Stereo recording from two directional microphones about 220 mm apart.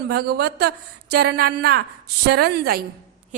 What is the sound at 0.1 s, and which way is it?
A woman's voice, 45° right (ahead or behind).